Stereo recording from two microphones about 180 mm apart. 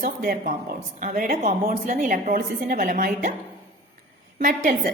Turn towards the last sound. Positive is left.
turn(degrees=-50)  # may be behind; listen again after turning